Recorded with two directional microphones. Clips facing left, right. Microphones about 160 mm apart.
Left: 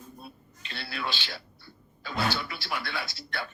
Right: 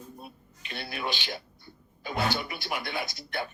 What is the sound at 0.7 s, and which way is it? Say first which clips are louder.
Speech: right 1 dB; 20° right (ahead or behind).